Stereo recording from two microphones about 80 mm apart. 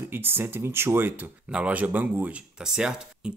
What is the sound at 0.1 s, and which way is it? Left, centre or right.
Speech, right.